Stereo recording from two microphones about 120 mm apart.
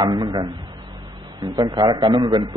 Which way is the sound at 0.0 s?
40° right (ahead or behind).